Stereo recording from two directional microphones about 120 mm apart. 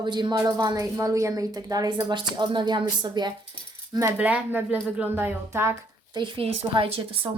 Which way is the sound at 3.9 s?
25° right (ahead or behind).